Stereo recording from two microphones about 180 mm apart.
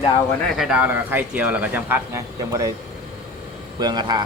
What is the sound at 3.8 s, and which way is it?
Speech, 20° right (ahead or behind).